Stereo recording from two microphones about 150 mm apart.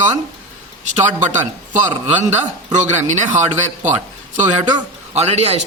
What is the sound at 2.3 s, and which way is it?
Speech, 50° right (ahead or behind).